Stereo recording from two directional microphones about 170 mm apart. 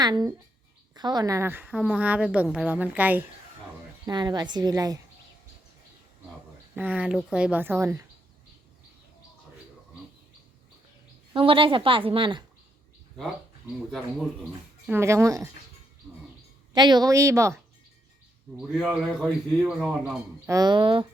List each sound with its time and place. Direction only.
0.0 s a woman's voice: 25° right (ahead or behind)
4.0 s a woman's voice: 25° right (ahead or behind)
6.7 s a woman's voice: 10° right (ahead or behind)
11.3 s a woman's voice: 30° right (ahead or behind)
14.8 s a woman's voice: 15° right (ahead or behind)
16.7 s a woman's voice: 25° right (ahead or behind)
18.5 s speech: centre (ahead or behind)
20.5 s a woman's voice: 25° right (ahead or behind)